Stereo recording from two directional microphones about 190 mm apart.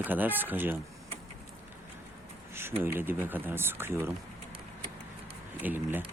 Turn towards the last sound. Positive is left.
turn(degrees=-10)  # may be behind; listen again after turning